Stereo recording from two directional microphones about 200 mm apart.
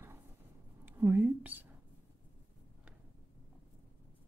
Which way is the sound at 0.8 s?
10° right (ahead or behind).